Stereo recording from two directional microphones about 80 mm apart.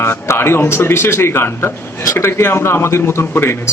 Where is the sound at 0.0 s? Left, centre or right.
Left.